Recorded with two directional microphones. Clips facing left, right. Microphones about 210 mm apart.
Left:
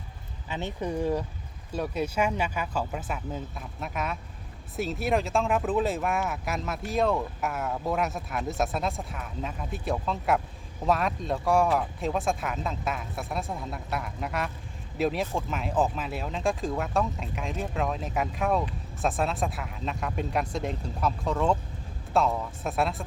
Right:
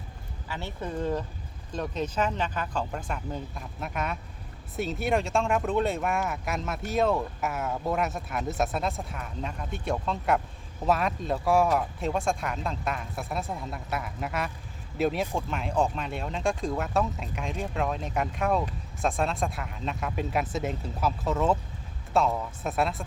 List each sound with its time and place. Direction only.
0.4 s speech: 20° left (ahead or behind); by 23.0 s centre (ahead or behind)